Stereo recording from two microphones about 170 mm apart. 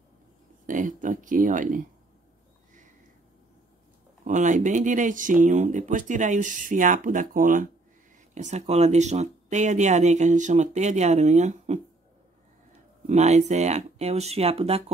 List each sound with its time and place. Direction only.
0.7 s a sound: 50° right (ahead or behind)
4.2 s speech: 50° right (ahead or behind)
13.0 s speech: 40° right (ahead or behind)